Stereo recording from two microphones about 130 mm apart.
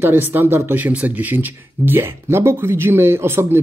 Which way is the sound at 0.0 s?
15° right (ahead or behind).